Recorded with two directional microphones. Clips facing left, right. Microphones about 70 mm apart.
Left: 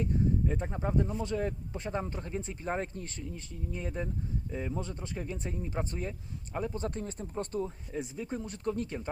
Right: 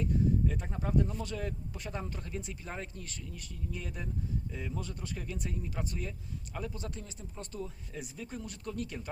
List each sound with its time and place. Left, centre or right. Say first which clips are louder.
0.0 s speech: even; left